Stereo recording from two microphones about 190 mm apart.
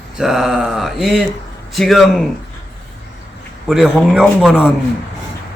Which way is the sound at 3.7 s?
Centre (ahead or behind).